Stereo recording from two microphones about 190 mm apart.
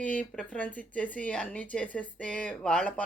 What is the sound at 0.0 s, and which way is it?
A man's voice, 5° left (ahead or behind).